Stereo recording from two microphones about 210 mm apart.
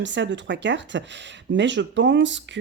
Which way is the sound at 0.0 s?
60° right (ahead or behind).